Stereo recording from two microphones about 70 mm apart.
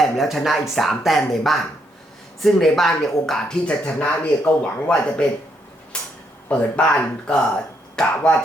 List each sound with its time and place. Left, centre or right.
0.0 s speech: centre
3.7 s speech: centre